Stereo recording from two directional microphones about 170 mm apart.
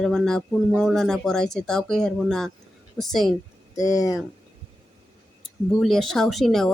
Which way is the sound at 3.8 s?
20° left (ahead or behind).